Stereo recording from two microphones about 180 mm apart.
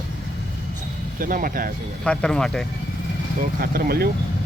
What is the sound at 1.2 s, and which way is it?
Speech, 50° right (ahead or behind).